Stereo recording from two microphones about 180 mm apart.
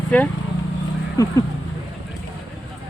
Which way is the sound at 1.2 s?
20° left (ahead or behind).